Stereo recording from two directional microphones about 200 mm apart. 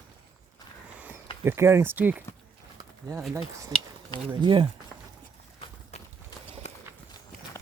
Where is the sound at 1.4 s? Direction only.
10° right (ahead or behind).